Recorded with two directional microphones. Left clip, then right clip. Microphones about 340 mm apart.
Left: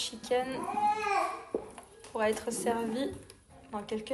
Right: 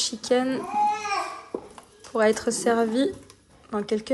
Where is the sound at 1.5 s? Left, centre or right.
Centre.